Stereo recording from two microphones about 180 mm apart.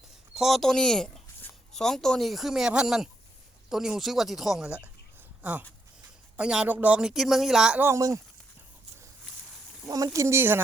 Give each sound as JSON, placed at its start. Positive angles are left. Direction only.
{"t": 0.3, "sound": "speech", "side_deg": 0}
{"t": 9.9, "sound": "speech", "side_deg": -20}